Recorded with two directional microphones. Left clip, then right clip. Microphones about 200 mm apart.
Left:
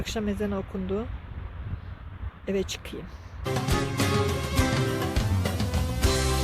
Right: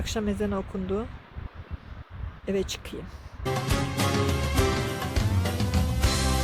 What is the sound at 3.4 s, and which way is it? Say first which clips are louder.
Music: even; centre (ahead or behind).